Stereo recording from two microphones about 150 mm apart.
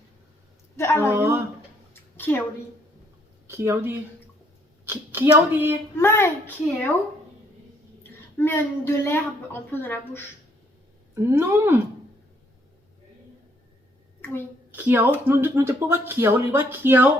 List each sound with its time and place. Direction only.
0.8 s a woman's voice: 20° left (ahead or behind)
1.0 s speech: 15° right (ahead or behind)
1.9 s a sound: 15° left (ahead or behind)
3.4 s speech: 15° right (ahead or behind)
6.0 s a woman's voice: 15° left (ahead or behind)
8.4 s a woman's voice: 15° left (ahead or behind)
11.1 s speech: 15° right (ahead or behind)
14.2 s a sound: 15° left (ahead or behind)
14.7 s speech: 10° right (ahead or behind)